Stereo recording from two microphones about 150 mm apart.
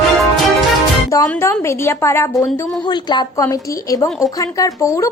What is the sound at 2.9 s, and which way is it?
A woman's voice, 30° left (ahead or behind).